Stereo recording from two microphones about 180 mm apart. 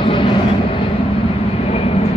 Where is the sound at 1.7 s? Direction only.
35° left (ahead or behind).